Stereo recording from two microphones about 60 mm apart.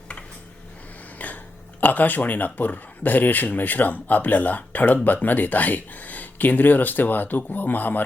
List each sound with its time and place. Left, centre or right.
1.2 s burping: left
1.8 s speech: left